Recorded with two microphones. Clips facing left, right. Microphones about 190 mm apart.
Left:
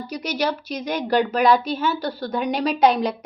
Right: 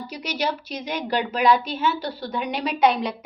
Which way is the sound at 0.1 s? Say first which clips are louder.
Left 3 dB; 40° left (ahead or behind).